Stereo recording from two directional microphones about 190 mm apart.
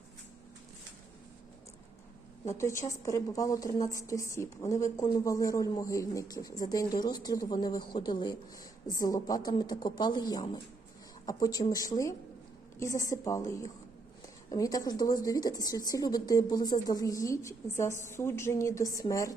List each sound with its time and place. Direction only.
2.6 s a woman's voice: 15° left (ahead or behind)
14.5 s a woman's voice: 20° left (ahead or behind)